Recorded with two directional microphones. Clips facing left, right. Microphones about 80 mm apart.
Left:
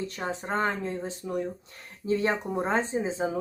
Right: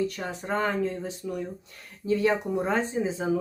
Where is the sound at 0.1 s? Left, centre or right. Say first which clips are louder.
Even; left.